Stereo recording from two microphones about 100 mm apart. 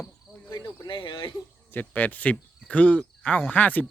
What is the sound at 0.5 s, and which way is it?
Cricket, 45° left (ahead or behind).